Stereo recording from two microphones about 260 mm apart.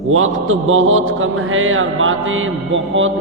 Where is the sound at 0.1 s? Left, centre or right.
Right.